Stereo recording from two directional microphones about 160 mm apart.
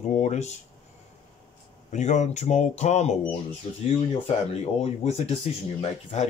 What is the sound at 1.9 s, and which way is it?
Speech, 45° left (ahead or behind).